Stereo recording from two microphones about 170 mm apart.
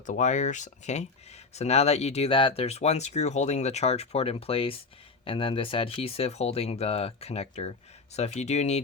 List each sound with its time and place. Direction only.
0.0 s speech: 45° left (ahead or behind)